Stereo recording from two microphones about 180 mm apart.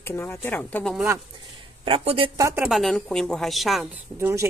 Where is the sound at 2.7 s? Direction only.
Centre (ahead or behind).